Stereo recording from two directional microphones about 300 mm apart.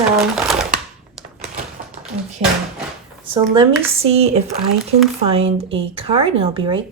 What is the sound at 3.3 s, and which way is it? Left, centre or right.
Speech, centre.